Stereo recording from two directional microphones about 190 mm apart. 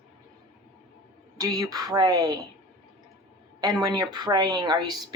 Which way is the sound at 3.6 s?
20° right (ahead or behind).